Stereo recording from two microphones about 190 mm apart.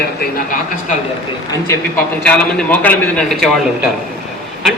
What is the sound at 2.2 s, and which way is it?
A man's voice, 10° left (ahead or behind).